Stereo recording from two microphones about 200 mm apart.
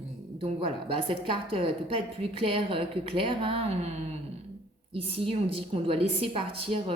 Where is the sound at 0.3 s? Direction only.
25° right (ahead or behind).